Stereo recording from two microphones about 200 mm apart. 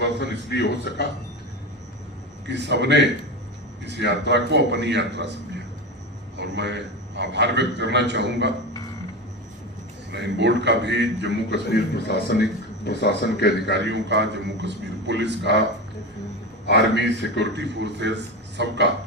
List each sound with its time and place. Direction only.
0.2 s a man's voice: 55° left (ahead or behind)
2.5 s a man's voice: 60° right (ahead or behind)
6.3 s a man's voice: 60° right (ahead or behind)
10.1 s a man's voice: 60° right (ahead or behind)
11.5 s a man's voice: 55° left (ahead or behind)
13.9 s a man's voice: 60° right (ahead or behind)
16.6 s a man's voice: 55° left (ahead or behind)
17.4 s a man's voice: 60° right (ahead or behind)